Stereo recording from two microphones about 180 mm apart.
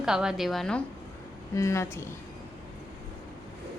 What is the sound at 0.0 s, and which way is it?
Speech, 5° right (ahead or behind).